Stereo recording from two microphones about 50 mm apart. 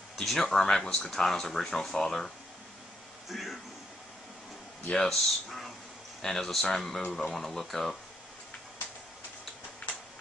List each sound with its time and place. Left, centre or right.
0.1 s speech: centre
3.3 s speech: centre
5.0 s speech: centre